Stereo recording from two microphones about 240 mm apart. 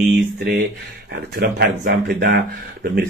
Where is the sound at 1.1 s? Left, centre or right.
Right.